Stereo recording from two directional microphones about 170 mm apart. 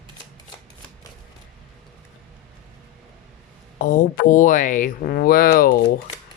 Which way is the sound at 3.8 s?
50° left (ahead or behind).